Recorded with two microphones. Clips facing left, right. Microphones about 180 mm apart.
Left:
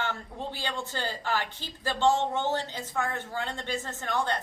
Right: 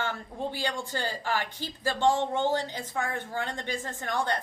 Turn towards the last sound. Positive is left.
turn(degrees=-15)  # may be behind; listen again after turning